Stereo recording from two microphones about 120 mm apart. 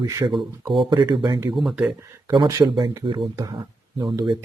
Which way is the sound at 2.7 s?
40° right (ahead or behind).